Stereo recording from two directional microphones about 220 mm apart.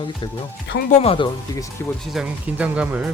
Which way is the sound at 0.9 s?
30° left (ahead or behind).